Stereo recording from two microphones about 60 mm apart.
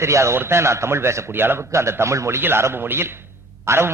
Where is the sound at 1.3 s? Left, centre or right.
Right.